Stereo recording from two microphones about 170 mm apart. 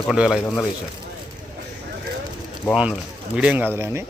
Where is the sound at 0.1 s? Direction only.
5° right (ahead or behind).